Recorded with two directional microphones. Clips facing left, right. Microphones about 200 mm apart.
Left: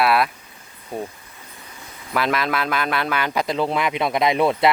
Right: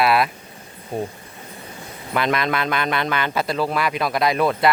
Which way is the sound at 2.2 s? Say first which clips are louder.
Right 1 dB; 5° left (ahead or behind).